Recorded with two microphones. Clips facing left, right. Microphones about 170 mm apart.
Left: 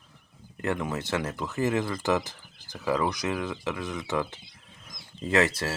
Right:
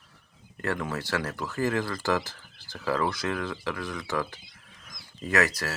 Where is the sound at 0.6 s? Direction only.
20° left (ahead or behind).